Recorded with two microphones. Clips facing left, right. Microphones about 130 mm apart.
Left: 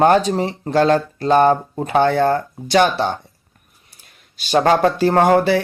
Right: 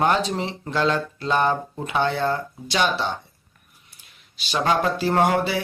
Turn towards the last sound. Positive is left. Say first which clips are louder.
# left 6 dB
turn(degrees=50)  # may be behind; listen again after turning